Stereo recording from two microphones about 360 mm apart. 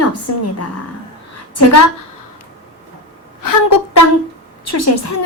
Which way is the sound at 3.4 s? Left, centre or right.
Left.